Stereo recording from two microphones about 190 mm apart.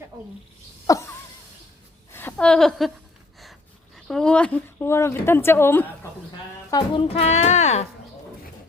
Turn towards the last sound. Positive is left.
turn(degrees=35)  # may be behind; listen again after turning